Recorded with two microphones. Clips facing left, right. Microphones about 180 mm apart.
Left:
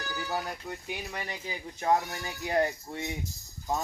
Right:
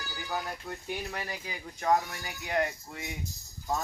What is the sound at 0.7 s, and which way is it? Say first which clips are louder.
Speech: right 1 dB; 15° left (ahead or behind).